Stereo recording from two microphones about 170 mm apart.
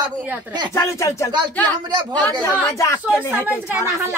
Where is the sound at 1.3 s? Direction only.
25° right (ahead or behind).